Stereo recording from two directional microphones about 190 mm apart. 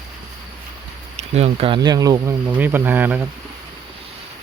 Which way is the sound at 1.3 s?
30° right (ahead or behind).